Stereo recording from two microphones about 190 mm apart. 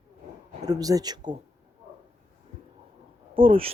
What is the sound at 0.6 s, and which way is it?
Speech, 20° right (ahead or behind).